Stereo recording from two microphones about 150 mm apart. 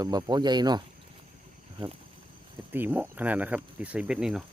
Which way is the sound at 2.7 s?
15° right (ahead or behind).